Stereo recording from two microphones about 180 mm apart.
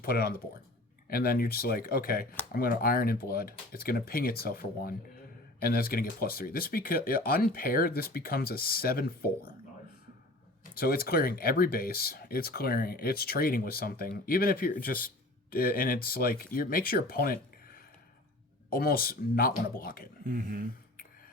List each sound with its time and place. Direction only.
0.0 s speech: 55° left (ahead or behind)
10.8 s speech: 60° left (ahead or behind)
20.2 s speech: 55° right (ahead or behind)